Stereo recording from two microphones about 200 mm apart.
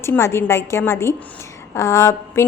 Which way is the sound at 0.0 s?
15° left (ahead or behind).